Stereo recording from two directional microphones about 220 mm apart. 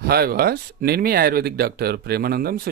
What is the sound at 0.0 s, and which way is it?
Speech, 45° right (ahead or behind).